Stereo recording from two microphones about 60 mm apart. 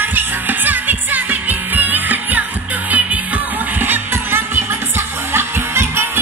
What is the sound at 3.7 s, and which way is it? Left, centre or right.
Music, right.